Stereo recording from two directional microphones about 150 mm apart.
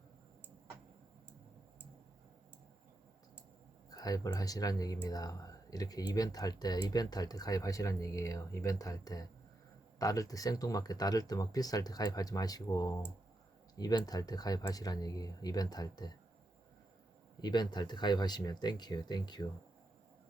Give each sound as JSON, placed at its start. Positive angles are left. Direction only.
{"t": 3.8, "sound": "speech", "side_deg": 25}
{"t": 17.4, "sound": "speech", "side_deg": 30}